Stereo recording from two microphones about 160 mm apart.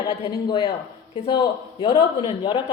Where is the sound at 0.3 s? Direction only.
25° left (ahead or behind).